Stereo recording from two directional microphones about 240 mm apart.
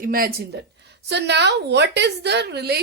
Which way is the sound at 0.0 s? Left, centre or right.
Right.